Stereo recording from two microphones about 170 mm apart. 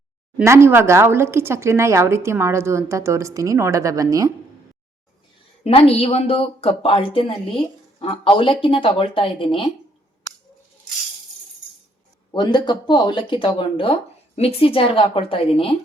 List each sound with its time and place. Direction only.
0.4 s a woman's voice: 15° right (ahead or behind)
5.6 s speech: 35° left (ahead or behind)
12.3 s speech: 25° left (ahead or behind)